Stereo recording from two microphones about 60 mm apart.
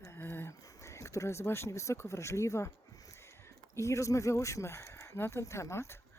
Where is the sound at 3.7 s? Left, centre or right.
Left.